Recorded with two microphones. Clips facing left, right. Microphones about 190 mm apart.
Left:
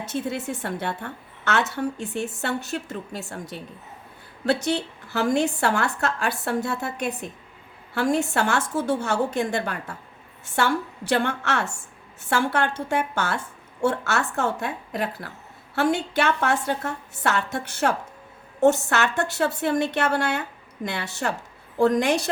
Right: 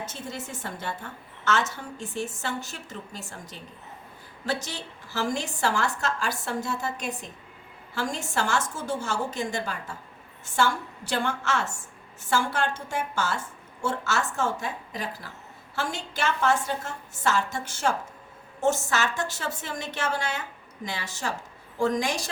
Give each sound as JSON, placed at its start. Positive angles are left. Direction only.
{"t": 0.0, "sound": "a woman's voice", "side_deg": 60}